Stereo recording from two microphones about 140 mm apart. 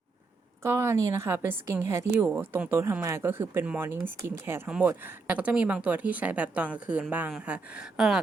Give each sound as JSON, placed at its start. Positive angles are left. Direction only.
{"t": 0.6, "sound": "a woman's voice", "side_deg": -20}